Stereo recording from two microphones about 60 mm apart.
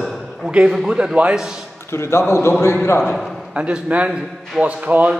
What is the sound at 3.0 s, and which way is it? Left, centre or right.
Speech, centre.